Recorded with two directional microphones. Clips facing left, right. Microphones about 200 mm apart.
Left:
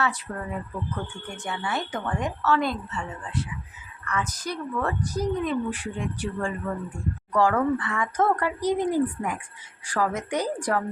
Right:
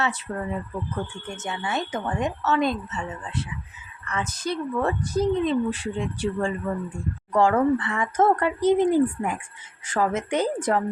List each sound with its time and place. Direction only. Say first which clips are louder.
0.3 s a woman's voice: right 3 dB; 25° right (ahead or behind)
1.5 s a woman's voice: right 1 dB; 20° right (ahead or behind)